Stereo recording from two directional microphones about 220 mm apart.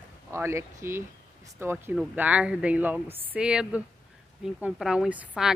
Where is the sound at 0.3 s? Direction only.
10° right (ahead or behind).